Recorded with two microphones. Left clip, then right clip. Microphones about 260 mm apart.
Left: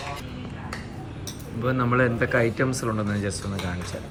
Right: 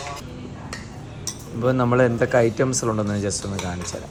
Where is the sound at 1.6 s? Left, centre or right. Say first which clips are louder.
Right 4 dB; centre.